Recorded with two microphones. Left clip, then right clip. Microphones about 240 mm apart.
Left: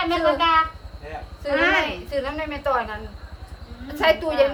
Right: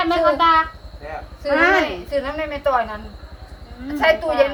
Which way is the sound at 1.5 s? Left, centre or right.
Right.